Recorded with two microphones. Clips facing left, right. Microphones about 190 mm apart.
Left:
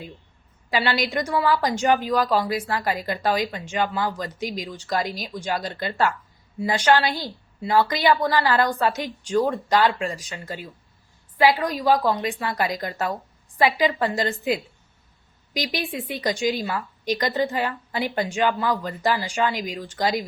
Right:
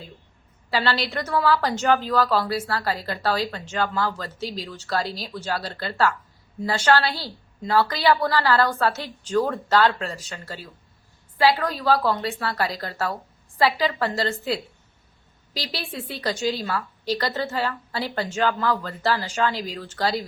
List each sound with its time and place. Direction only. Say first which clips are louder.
0.7 s a woman's voice: left 1 dB; 15° left (ahead or behind)
15.5 s a woman's voice: left 4 dB; 15° left (ahead or behind)